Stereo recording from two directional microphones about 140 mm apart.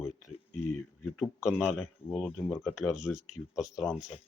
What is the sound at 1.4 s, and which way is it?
Speech, centre (ahead or behind).